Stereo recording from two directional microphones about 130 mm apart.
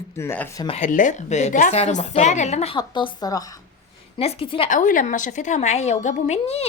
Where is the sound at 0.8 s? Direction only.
75° left (ahead or behind); by 2.8 s 60° left (ahead or behind).